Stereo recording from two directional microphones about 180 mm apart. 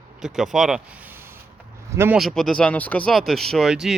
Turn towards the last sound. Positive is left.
turn(degrees=0)  # may be behind; listen again after turning